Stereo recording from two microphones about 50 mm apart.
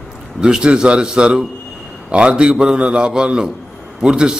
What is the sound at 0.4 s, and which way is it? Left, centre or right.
A man's voice, centre.